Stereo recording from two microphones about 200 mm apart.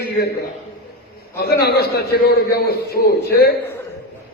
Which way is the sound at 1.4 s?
50° left (ahead or behind).